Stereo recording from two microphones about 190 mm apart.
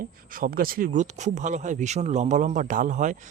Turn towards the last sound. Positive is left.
turn(degrees=-40)  # may be behind; listen again after turning